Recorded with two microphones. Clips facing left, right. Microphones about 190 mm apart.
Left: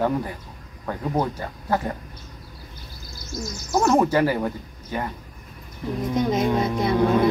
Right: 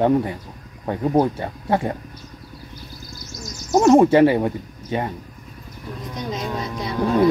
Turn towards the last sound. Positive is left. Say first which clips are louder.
# left 6 dB
turn(degrees=55)  # may be behind; listen again after turning